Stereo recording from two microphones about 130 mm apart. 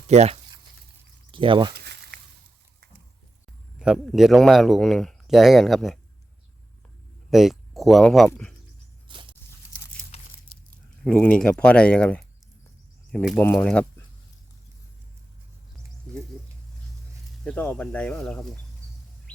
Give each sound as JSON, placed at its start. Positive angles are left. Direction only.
{"t": 0.1, "sound": "speech", "side_deg": -55}
{"t": 1.3, "sound": "speech", "side_deg": -40}
{"t": 3.8, "sound": "speech", "side_deg": -5}
{"t": 7.3, "sound": "speech", "side_deg": 0}
{"t": 9.0, "sound": "walk", "side_deg": -40}
{"t": 11.0, "sound": "speech", "side_deg": 10}
{"t": 13.3, "sound": "speech", "side_deg": 15}
{"t": 17.4, "sound": "speech", "side_deg": 10}